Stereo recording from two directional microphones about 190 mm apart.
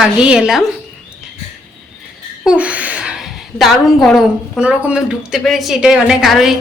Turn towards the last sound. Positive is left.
turn(degrees=0)  # may be behind; listen again after turning